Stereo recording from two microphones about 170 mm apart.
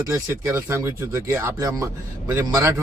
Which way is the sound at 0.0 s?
15° right (ahead or behind).